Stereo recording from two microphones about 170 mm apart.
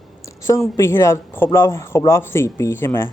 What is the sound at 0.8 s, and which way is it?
Speech, 15° left (ahead or behind).